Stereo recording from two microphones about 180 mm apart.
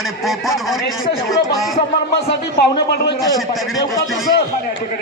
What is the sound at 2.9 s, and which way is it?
Speech, 60° left (ahead or behind).